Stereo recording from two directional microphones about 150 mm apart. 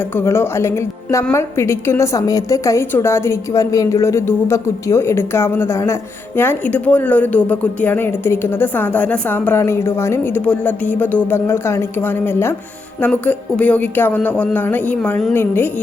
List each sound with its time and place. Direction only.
0.2 s a woman's voice: 15° left (ahead or behind)